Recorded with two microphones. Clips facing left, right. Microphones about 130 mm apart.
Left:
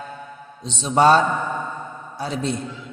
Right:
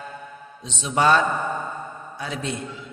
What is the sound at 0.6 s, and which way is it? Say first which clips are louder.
A man's voice: left 5 dB; 35° left (ahead or behind).